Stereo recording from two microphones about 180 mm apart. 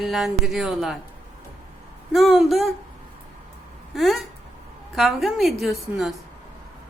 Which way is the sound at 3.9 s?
Centre (ahead or behind).